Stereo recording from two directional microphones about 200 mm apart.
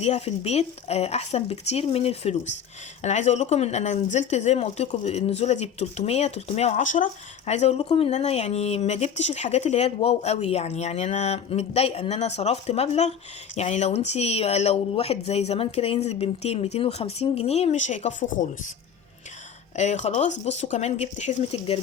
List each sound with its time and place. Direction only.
0.0 s speech: 30° left (ahead or behind)
19.7 s speech: 35° left (ahead or behind)